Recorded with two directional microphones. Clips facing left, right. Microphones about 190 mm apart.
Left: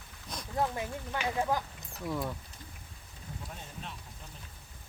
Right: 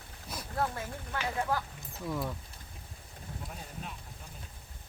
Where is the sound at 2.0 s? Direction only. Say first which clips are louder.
Left 1 dB; centre (ahead or behind).